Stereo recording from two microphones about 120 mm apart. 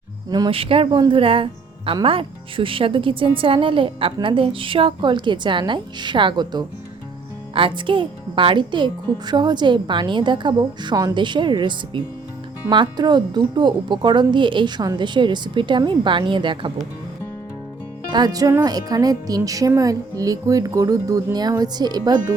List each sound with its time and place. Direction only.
0.3 s a woman's voice: 40° right (ahead or behind)
7.9 s a woman's voice: 45° right (ahead or behind)
18.1 s a woman's voice: 35° right (ahead or behind)